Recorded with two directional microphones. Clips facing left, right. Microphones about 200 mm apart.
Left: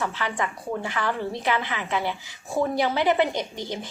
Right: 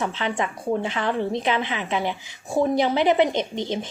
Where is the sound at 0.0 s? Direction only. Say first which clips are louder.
Right 2 dB; 20° right (ahead or behind).